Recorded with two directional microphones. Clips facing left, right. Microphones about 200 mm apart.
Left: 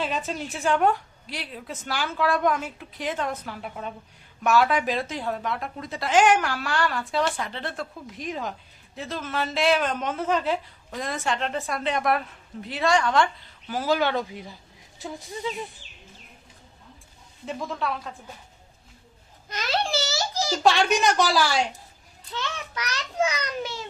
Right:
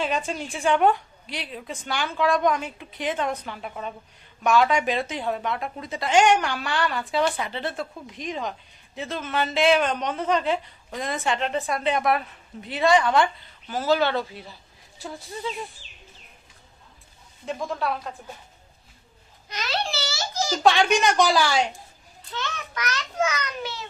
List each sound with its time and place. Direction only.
0.0 s a woman's voice: centre (ahead or behind)
13.7 s speech: 10° left (ahead or behind)
17.4 s a woman's voice: centre (ahead or behind)
19.5 s a child's voice: 50° left (ahead or behind)
20.7 s a woman's voice: centre (ahead or behind)
22.7 s a child's voice: 35° left (ahead or behind)